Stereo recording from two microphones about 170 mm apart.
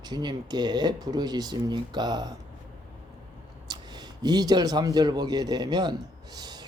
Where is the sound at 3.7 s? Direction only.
25° right (ahead or behind).